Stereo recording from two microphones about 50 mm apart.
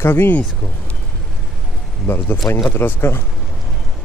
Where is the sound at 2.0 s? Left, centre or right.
Left.